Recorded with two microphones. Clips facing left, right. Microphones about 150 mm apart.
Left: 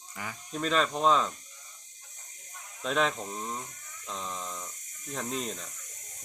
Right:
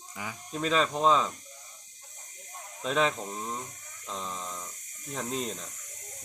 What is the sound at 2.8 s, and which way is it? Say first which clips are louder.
Speech: right 1 dB; centre (ahead or behind).